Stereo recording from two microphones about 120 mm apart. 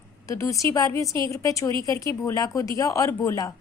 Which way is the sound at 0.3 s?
25° left (ahead or behind).